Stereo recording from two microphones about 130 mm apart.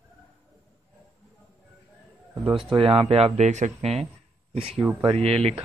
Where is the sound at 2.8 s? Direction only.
45° right (ahead or behind).